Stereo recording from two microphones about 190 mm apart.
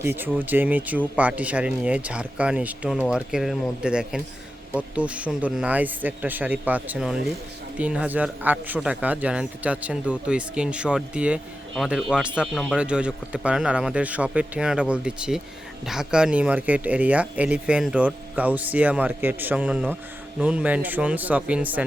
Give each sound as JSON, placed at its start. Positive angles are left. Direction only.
{"t": 0.0, "sound": "a man's voice", "side_deg": -10}